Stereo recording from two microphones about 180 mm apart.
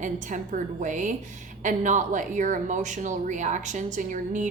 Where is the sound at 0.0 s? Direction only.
45° right (ahead or behind).